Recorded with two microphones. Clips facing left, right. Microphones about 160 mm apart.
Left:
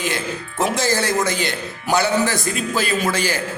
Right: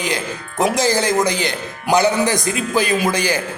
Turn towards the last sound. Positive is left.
turn(degrees=-15)  # may be behind; listen again after turning